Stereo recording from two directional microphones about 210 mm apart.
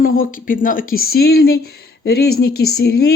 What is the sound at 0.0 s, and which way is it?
Speech, 40° left (ahead or behind).